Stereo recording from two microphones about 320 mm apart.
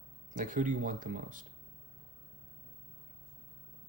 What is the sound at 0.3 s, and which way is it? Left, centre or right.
Speech, right.